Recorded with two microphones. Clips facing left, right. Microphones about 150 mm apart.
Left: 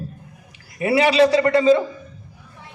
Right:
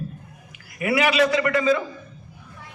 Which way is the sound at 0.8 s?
35° left (ahead or behind).